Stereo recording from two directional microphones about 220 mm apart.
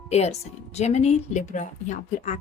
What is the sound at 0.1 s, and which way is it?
A woman's voice, 30° left (ahead or behind).